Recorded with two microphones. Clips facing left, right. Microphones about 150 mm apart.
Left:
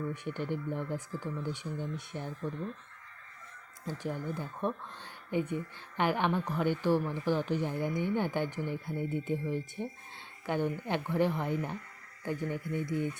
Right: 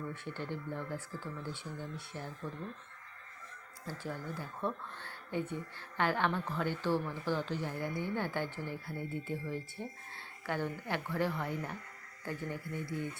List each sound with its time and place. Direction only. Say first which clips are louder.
0.1 s speech: left 5 dB; 15° left (ahead or behind)
3.8 s speech: left 5 dB; 20° left (ahead or behind)